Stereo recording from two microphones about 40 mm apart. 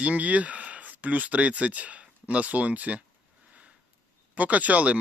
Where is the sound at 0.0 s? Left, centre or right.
Right.